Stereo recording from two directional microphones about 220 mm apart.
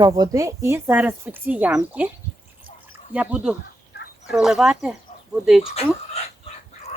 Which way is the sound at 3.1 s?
5° right (ahead or behind).